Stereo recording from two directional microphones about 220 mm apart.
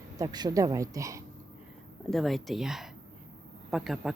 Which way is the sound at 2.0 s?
Centre (ahead or behind).